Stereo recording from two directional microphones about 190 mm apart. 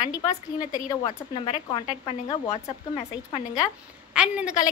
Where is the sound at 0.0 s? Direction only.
20° left (ahead or behind).